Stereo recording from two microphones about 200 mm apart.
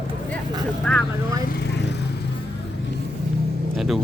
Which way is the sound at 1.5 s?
60° left (ahead or behind).